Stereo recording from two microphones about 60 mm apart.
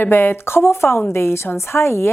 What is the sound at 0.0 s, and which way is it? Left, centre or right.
A woman's voice, left.